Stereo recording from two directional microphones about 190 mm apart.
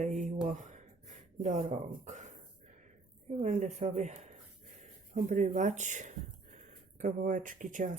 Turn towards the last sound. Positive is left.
turn(degrees=-45)  # may be behind; listen again after turning